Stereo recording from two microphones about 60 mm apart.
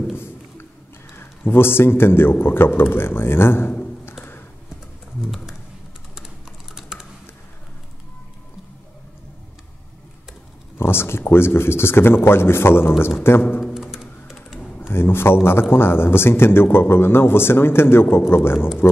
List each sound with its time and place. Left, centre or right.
0.1 s a sound: left
1.1 s a man's voice: left
4.2 s computer keyboard: left
5.2 s typing: centre
6.7 s typing: centre
10.8 s a man's voice: left
13.7 s music: centre
14.3 s typing: centre
14.8 s a man's voice: left